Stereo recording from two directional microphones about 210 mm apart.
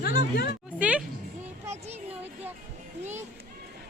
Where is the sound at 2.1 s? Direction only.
10° right (ahead or behind).